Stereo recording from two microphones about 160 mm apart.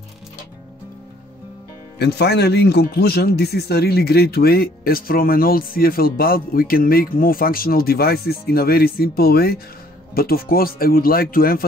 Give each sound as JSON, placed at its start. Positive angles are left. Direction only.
{"t": 2.0, "sound": "speech", "side_deg": 90}